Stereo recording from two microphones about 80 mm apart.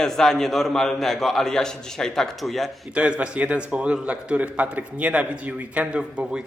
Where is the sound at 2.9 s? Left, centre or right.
Centre.